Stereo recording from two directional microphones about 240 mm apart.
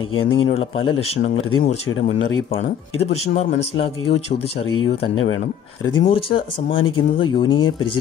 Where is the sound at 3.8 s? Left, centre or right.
Left.